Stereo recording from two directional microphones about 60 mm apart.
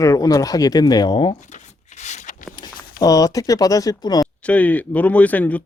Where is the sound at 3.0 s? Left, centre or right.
Left.